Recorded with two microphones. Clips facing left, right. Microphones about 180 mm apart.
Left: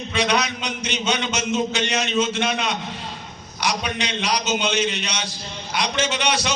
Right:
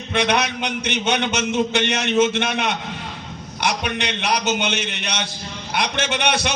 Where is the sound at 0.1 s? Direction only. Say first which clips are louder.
Right 2 dB; 60° right (ahead or behind).